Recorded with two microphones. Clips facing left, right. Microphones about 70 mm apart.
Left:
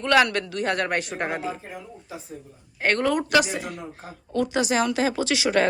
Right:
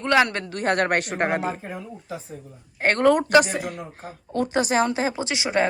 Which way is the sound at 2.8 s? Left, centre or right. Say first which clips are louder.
Right 4 dB; right.